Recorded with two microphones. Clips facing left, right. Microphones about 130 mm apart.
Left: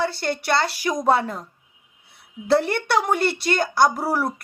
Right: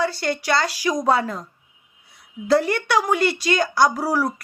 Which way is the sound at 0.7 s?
55° left (ahead or behind).